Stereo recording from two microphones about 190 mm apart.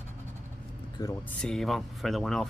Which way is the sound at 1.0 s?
20° left (ahead or behind).